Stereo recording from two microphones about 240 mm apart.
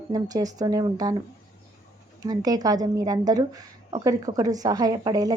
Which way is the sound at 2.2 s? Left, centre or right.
Centre.